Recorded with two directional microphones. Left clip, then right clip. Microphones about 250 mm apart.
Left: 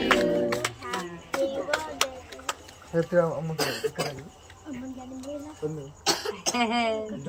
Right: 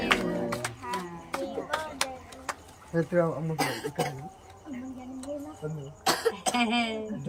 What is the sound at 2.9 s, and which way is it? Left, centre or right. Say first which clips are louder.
Speech: left 3 dB; centre.